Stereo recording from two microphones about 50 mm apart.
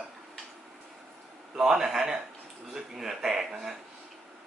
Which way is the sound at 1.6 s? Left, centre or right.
Centre.